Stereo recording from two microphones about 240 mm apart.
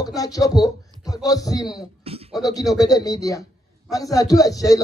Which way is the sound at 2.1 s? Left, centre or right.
Right.